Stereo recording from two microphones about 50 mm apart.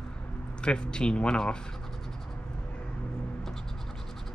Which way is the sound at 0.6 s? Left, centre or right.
Centre.